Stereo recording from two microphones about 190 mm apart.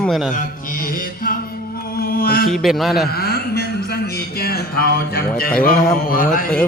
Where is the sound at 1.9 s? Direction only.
50° left (ahead or behind).